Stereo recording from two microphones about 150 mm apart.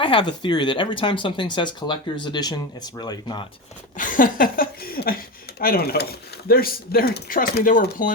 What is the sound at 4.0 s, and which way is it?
Speech, 65° left (ahead or behind).